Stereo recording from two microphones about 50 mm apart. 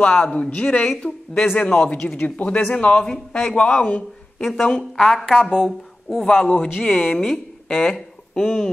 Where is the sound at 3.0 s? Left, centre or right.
Centre.